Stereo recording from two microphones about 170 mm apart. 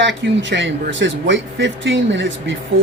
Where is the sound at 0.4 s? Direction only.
90° right.